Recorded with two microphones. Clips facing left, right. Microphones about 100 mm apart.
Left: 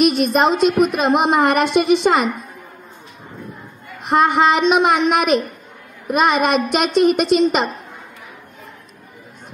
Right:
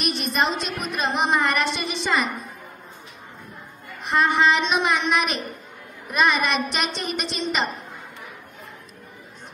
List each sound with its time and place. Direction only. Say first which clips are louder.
0.0 s a woman's voice: left 9 dB; 50° left (ahead or behind)
4.1 s a woman's voice: left 5 dB; 50° left (ahead or behind)